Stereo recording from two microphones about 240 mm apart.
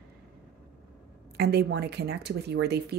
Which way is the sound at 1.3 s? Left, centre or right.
Right.